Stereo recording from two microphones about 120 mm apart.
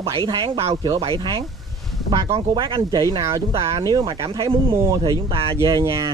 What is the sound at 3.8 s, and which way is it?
Speech, 35° right (ahead or behind).